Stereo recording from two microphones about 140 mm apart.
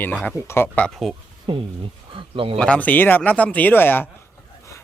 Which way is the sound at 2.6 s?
10° left (ahead or behind).